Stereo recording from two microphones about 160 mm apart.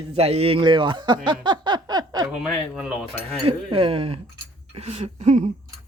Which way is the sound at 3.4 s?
35° right (ahead or behind).